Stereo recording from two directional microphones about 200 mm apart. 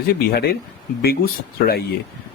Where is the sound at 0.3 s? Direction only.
50° left (ahead or behind).